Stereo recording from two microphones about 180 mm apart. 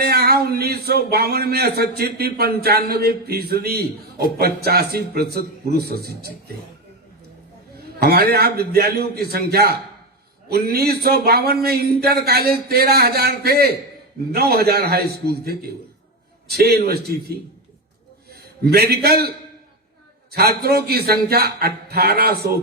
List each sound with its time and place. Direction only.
0.0 s a man's voice: 60° right (ahead or behind)
7.9 s a man's voice: 60° right (ahead or behind)
18.6 s a man's voice: 60° right (ahead or behind)
20.3 s a man's voice: 60° right (ahead or behind)